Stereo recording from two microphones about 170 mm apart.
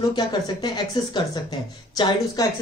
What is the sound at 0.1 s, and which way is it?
Speech, 25° left (ahead or behind).